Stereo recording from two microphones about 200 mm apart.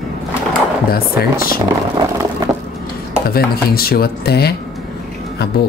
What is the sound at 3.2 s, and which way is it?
Speech, 50° left (ahead or behind).